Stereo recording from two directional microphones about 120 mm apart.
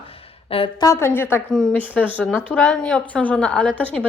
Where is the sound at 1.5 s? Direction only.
5° left (ahead or behind).